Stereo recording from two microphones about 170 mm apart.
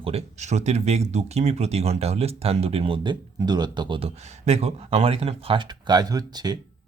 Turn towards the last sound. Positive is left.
turn(degrees=-25)  # may be behind; listen again after turning